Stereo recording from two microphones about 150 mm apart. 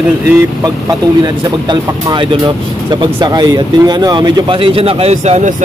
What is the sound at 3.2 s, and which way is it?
Speech, 30° right (ahead or behind).